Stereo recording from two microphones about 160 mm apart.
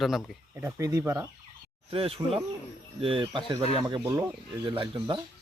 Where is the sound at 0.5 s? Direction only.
20° right (ahead or behind).